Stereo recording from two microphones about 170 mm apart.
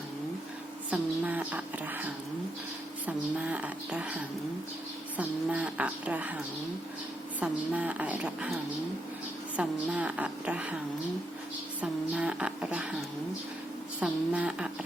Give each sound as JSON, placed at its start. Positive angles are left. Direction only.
{"t": 0.9, "sound": "speech", "side_deg": -10}
{"t": 3.1, "sound": "speech", "side_deg": -10}
{"t": 7.3, "sound": "speech", "side_deg": -10}
{"t": 9.6, "sound": "speech", "side_deg": -10}
{"t": 11.8, "sound": "a woman's voice", "side_deg": -5}